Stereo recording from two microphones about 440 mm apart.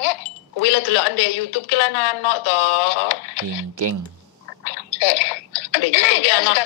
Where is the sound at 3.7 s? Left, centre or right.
Right.